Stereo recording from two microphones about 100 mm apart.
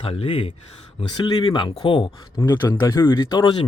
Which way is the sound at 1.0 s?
45° left (ahead or behind).